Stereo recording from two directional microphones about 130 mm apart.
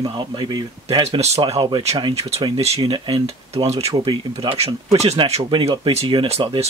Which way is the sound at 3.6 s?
55° right (ahead or behind).